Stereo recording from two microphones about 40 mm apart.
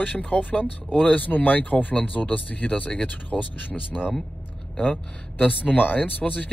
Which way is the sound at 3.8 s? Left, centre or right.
Centre.